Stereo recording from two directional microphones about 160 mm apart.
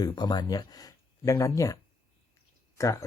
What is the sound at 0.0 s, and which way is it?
Speech, 25° left (ahead or behind).